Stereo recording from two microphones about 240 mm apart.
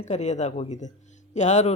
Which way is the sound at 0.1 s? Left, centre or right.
Left.